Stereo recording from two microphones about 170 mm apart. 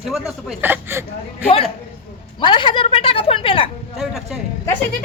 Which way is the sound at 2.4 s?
30° left (ahead or behind).